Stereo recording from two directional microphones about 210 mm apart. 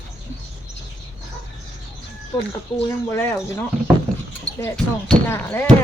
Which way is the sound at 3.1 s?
10° left (ahead or behind).